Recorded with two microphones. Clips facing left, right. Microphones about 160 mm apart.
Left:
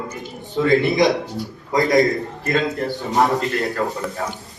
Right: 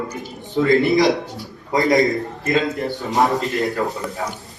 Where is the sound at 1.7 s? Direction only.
20° right (ahead or behind).